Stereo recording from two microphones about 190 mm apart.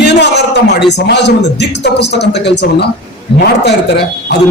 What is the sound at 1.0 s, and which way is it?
Speech, 65° left (ahead or behind).